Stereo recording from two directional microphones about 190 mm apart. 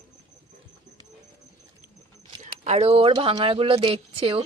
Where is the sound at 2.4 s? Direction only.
35° right (ahead or behind).